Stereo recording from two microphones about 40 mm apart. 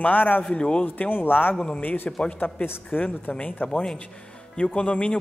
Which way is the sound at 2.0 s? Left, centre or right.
Left.